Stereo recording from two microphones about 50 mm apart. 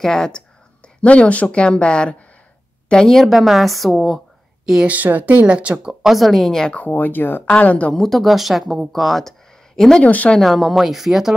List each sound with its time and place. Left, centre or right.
0.0 s speech: centre
0.8 s a woman's voice: left; by 4.2 s centre
4.8 s speech: right
5.9 s speech: centre
6.7 s speech: left
7.5 s a woman's voice: left
7.9 s speech: centre
10.0 s a woman's voice: left
10.4 s speech: centre